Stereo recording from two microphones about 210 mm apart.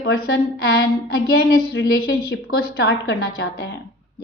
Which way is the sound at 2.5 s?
55° left (ahead or behind).